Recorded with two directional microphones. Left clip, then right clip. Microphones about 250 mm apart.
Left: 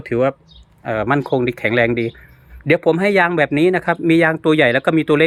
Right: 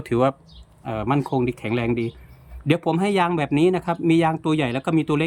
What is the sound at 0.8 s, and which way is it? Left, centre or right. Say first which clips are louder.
Speech: left 6 dB; centre.